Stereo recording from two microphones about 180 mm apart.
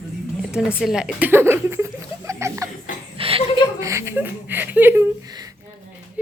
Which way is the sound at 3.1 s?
30° right (ahead or behind).